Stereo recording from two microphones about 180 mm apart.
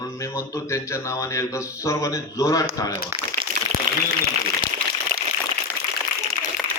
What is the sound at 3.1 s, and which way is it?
Crumpling, 30° right (ahead or behind).